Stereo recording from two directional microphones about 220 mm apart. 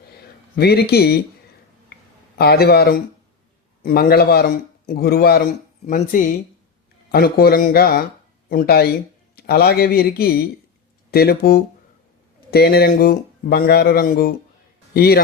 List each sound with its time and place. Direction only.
0.5 s speech: 45° left (ahead or behind)
2.4 s speech: 45° left (ahead or behind)